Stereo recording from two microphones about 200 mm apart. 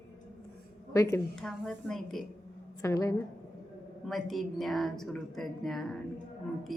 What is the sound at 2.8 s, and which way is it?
Speech, 15° left (ahead or behind).